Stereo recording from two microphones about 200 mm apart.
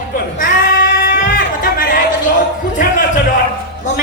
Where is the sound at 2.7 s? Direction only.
45° left (ahead or behind).